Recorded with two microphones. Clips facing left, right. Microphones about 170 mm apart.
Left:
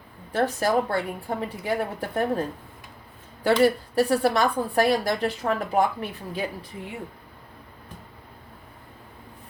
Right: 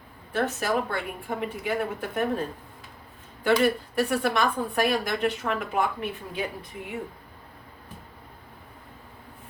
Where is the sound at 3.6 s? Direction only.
35° left (ahead or behind).